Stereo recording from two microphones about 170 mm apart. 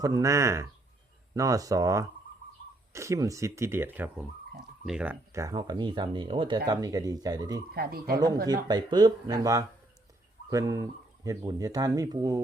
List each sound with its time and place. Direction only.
0.0 s speech: 20° right (ahead or behind); by 5.1 s 5° right (ahead or behind)
5.3 s speech: 20° right (ahead or behind)
7.7 s speech: 65° right (ahead or behind)
8.6 s speech: 25° right (ahead or behind)